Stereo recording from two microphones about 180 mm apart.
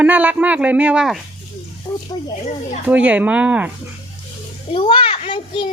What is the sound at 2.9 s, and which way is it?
Speech, 10° right (ahead or behind).